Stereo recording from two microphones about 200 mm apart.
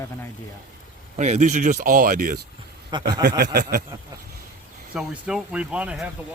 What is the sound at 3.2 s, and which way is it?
Speech, 55° right (ahead or behind).